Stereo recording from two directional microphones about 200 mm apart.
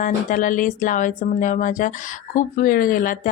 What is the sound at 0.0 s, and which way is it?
Speech, 40° left (ahead or behind).